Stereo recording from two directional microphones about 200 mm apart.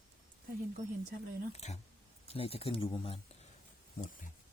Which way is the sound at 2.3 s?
30° left (ahead or behind).